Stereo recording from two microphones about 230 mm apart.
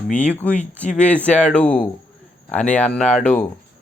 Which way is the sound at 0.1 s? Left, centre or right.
Centre.